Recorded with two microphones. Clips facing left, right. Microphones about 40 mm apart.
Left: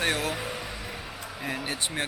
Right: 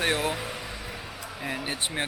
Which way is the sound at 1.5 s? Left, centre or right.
Centre.